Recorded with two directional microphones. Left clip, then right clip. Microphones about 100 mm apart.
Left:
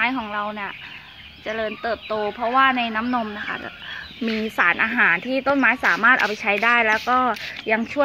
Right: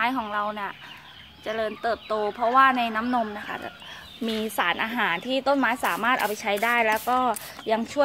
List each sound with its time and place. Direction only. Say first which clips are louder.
0.0 s speech: left 2 dB; 10° right (ahead or behind)
1.5 s speech: left 2 dB; 20° right (ahead or behind)
5.3 s speech: left 4 dB; 10° right (ahead or behind)